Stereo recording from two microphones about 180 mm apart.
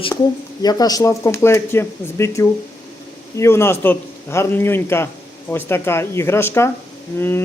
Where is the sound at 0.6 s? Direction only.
20° left (ahead or behind).